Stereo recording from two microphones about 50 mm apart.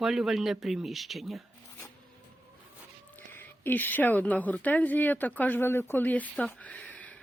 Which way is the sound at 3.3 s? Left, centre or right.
Left.